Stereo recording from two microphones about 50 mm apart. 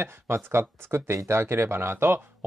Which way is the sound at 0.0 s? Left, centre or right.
Right.